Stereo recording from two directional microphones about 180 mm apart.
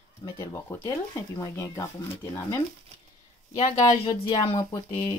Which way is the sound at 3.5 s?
30° left (ahead or behind).